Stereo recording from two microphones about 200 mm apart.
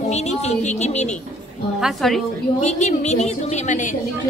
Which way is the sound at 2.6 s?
35° left (ahead or behind).